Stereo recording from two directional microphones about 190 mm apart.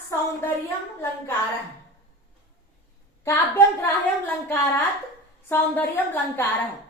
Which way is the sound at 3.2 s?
15° left (ahead or behind).